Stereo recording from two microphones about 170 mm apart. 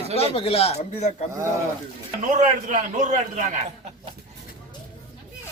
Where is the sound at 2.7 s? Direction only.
45° right (ahead or behind).